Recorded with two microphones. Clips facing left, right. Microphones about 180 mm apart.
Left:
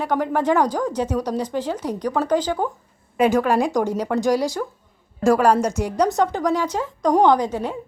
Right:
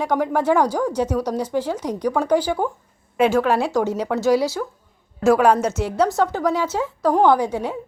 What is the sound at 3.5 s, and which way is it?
Speech, 15° left (ahead or behind).